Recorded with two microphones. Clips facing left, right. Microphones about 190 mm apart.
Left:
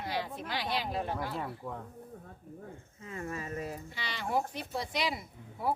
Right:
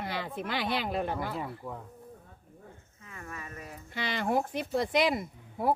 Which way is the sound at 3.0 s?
25° left (ahead or behind).